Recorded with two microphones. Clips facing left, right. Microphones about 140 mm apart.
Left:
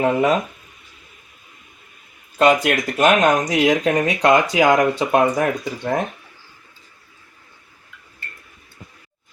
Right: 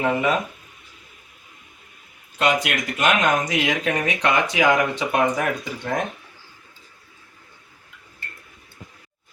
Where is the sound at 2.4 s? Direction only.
40° left (ahead or behind).